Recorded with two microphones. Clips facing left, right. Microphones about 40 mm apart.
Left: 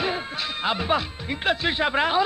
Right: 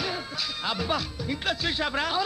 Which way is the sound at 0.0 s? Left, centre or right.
Left.